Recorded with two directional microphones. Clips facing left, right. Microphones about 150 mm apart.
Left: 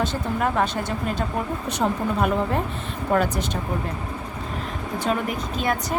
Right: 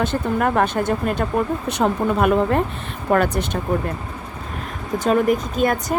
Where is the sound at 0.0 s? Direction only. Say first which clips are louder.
Right 4 dB; 55° right (ahead or behind).